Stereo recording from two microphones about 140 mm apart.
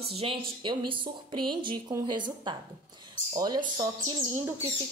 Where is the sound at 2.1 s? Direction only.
35° right (ahead or behind).